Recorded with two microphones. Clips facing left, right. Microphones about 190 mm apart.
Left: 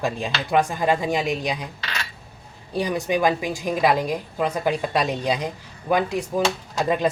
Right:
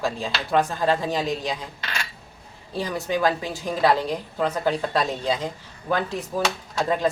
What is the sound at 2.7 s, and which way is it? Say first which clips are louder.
Speech: left 3 dB; 15° left (ahead or behind).